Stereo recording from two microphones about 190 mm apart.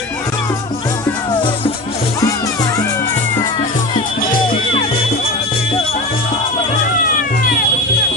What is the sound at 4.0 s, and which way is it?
Music, 45° left (ahead or behind).